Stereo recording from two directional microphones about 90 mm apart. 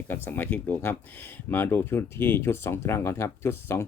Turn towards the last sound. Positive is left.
turn(degrees=30)  # may be behind; listen again after turning